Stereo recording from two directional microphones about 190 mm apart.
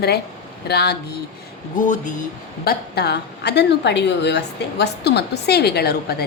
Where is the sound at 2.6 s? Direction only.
55° left (ahead or behind).